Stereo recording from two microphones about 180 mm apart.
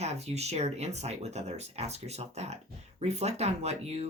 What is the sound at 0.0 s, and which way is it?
Speech, 35° right (ahead or behind).